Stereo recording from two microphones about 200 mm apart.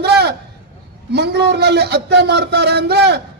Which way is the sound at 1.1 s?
55° right (ahead or behind).